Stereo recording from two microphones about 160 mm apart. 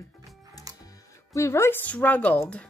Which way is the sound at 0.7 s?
25° right (ahead or behind).